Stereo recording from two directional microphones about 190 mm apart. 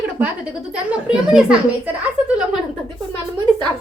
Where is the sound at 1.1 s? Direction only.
5° right (ahead or behind).